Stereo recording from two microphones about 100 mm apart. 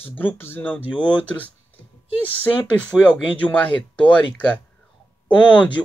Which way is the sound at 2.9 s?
5° right (ahead or behind).